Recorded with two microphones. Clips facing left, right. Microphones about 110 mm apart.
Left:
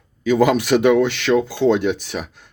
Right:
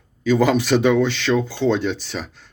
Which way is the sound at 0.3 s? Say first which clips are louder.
Left 1 dB; 10° left (ahead or behind).